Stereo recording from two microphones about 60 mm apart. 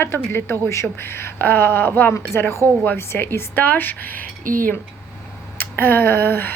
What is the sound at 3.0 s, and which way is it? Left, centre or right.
Speech, left.